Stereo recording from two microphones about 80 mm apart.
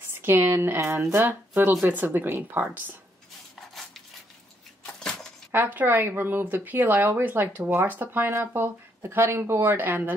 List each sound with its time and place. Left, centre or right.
0.1 s speech: right
5.5 s speech: right